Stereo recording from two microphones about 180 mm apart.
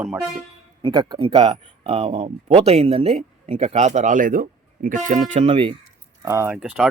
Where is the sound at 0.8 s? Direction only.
25° right (ahead or behind); by 5.4 s 40° right (ahead or behind).